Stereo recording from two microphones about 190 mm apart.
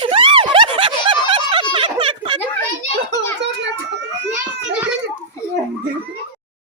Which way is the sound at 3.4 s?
65° right (ahead or behind).